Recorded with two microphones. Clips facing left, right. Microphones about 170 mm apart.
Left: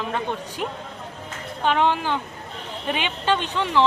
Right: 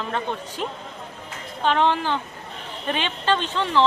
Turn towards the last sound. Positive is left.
turn(degrees=15)  # may be behind; listen again after turning